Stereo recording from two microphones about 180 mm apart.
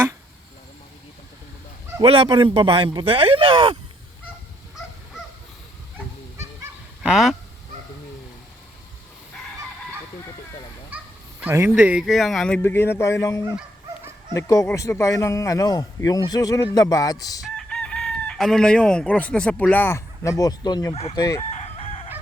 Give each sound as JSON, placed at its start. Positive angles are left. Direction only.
{"t": 2.0, "sound": "speech", "side_deg": -25}
{"t": 7.0, "sound": "speech", "side_deg": 0}
{"t": 10.9, "sound": "a man's voice", "side_deg": -10}
{"t": 17.6, "sound": "chicken", "side_deg": 5}
{"t": 20.4, "sound": "a man's voice", "side_deg": 20}
{"t": 20.9, "sound": "chicken", "side_deg": 35}
{"t": 21.2, "sound": "a man's voice", "side_deg": 20}
{"t": 21.6, "sound": "chicken", "side_deg": 30}